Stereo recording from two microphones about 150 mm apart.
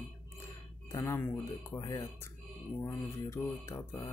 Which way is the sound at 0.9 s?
15° left (ahead or behind).